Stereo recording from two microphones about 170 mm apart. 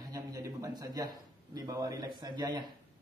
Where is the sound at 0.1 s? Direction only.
20° right (ahead or behind).